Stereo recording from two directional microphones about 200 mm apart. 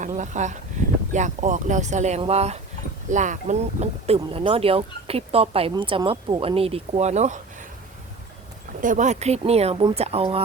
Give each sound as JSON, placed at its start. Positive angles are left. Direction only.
{"t": 0.0, "sound": "speech", "side_deg": -35}
{"t": 8.8, "sound": "speech", "side_deg": -40}